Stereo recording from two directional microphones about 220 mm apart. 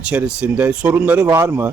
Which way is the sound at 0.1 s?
5° right (ahead or behind).